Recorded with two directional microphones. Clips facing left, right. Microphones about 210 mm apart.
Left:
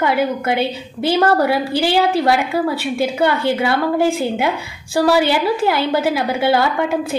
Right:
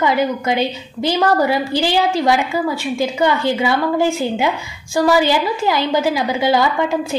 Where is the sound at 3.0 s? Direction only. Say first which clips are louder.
Even; 5° left (ahead or behind).